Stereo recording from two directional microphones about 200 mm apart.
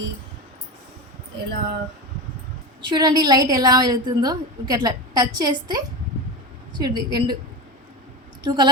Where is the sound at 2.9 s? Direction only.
20° right (ahead or behind).